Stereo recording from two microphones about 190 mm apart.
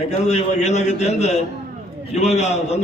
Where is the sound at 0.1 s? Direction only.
35° left (ahead or behind).